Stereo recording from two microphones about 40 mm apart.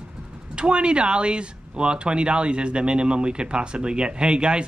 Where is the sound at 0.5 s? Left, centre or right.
Right.